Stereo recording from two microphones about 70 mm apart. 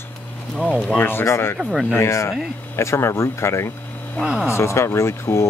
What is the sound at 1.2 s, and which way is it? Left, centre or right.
Speech, left.